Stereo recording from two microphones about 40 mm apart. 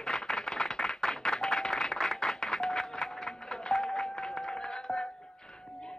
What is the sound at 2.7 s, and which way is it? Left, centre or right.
Music, centre.